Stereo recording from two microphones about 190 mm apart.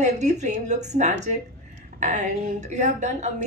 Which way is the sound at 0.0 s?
40° right (ahead or behind).